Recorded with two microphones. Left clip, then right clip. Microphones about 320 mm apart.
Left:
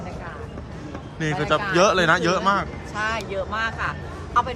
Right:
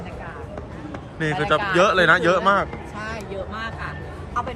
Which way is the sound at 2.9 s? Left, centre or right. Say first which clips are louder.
Left 7 dB; centre.